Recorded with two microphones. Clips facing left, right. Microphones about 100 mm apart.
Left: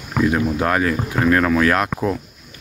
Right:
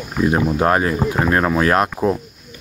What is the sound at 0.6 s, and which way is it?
Speech, 30° right (ahead or behind).